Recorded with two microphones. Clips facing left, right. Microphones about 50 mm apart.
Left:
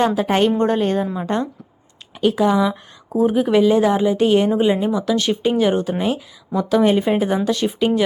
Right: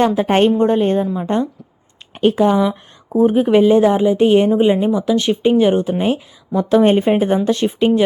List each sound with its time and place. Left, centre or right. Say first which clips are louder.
0.2 s speech: right 3 dB; right
0.6 s a woman's voice: right 3 dB; centre
1.0 s a woman's voice: right 3 dB; centre
2.1 s a sound: right 3 dB; right
2.4 s a woman's voice: right 2 dB; right
6.0 s speech: right 3 dB; right
7.8 s a woman's voice: right 4 dB; centre